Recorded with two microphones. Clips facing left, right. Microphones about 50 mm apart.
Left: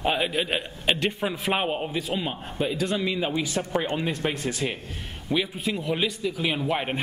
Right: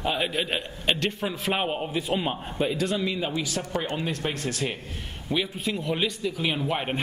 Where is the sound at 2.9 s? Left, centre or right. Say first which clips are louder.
Left 1 dB; centre.